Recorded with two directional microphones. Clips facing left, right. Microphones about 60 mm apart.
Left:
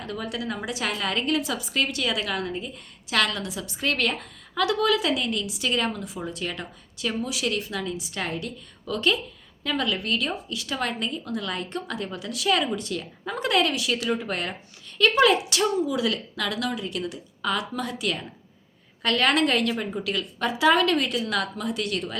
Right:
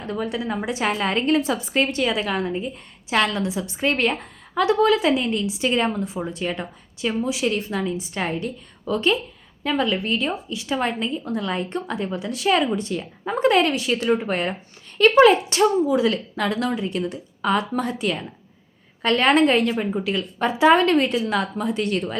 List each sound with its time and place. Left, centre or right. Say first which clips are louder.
0.0 s a woman's voice: right 5 dB; right